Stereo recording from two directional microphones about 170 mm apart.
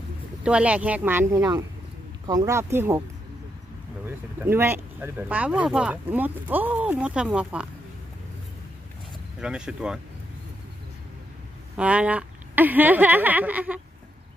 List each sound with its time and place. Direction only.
0.4 s speech: 5° right (ahead or behind)
4.0 s speech: 15° right (ahead or behind)
9.4 s speech: 5° right (ahead or behind)
11.7 s speech: 5° right (ahead or behind)